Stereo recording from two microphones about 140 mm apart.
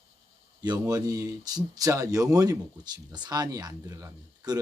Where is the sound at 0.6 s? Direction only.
30° right (ahead or behind).